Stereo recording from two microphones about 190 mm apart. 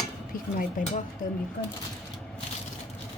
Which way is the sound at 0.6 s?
45° left (ahead or behind).